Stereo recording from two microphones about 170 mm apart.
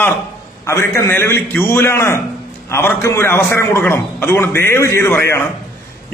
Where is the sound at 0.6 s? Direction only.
15° left (ahead or behind).